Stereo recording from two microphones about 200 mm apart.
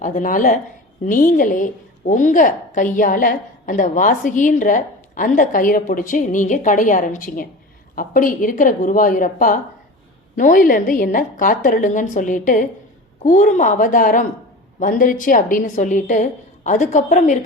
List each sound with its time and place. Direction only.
0.0 s a woman's voice: 40° left (ahead or behind)